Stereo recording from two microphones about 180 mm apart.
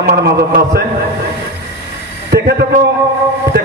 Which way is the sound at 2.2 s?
65° right (ahead or behind).